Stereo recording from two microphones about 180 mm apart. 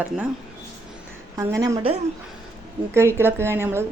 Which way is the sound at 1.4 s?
15° right (ahead or behind).